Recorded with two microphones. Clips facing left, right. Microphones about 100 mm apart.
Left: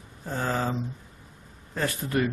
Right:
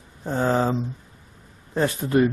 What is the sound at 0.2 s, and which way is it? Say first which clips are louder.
Speech: right 7 dB; 25° right (ahead or behind).